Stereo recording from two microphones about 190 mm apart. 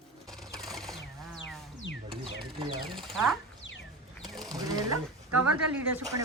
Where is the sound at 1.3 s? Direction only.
75° left (ahead or behind).